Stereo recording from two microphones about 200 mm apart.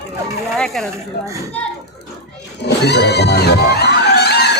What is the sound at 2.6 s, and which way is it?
Music, 55° left (ahead or behind).